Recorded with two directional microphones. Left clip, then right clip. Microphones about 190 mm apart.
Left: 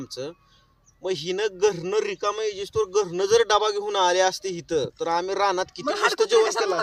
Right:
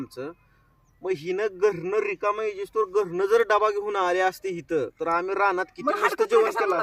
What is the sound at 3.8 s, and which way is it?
Speech, 45° left (ahead or behind).